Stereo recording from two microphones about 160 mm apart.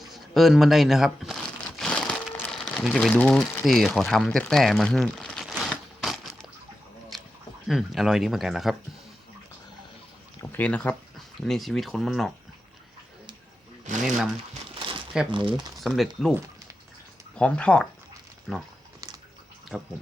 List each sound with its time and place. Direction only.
0.0 s crumpling: centre (ahead or behind)
7.7 s speech: centre (ahead or behind)
10.5 s speech: 10° left (ahead or behind)
13.9 s speech: 50° right (ahead or behind)
14.8 s crumpling: 30° right (ahead or behind)
15.3 s speech: 30° right (ahead or behind)
15.8 s speech: centre (ahead or behind)
17.3 s speech: 5° left (ahead or behind)
19.7 s speech: 5° right (ahead or behind)